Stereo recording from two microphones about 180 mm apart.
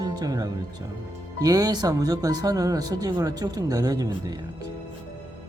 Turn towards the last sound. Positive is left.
turn(degrees=-20)  # may be behind; listen again after turning